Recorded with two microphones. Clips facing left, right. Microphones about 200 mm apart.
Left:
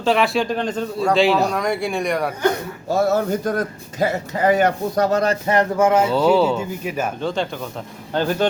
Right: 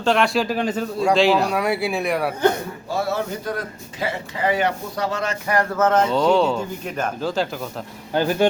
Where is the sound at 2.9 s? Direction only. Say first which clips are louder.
Left 6 dB; 45° left (ahead or behind).